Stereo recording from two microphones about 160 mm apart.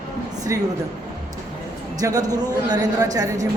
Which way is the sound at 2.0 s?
20° right (ahead or behind).